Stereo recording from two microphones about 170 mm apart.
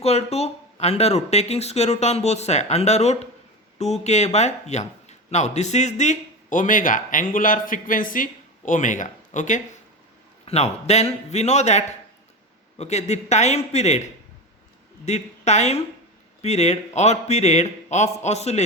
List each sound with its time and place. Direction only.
0.0 s speech: 40° left (ahead or behind)